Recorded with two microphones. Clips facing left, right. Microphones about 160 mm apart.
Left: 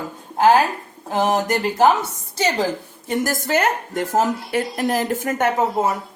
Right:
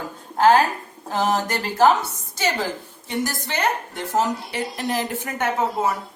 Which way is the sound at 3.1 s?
45° left (ahead or behind).